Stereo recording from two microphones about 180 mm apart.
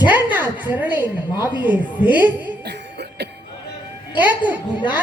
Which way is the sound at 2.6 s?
70° right (ahead or behind).